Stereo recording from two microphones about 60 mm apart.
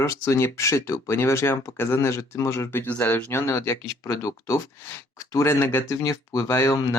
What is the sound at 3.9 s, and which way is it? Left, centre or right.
Speech, left.